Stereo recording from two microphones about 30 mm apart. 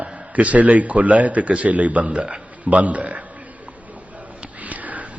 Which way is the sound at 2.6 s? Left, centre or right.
Right.